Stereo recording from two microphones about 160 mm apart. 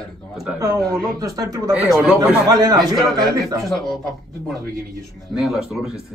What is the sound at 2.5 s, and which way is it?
Speech, 25° right (ahead or behind).